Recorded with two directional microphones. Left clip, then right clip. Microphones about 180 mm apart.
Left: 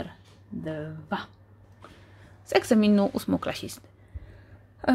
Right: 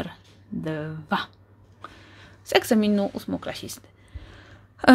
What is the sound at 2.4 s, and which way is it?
Speech, 5° right (ahead or behind).